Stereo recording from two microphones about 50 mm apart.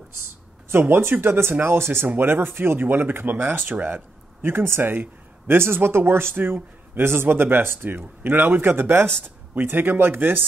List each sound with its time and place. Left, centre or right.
0.7 s speech: right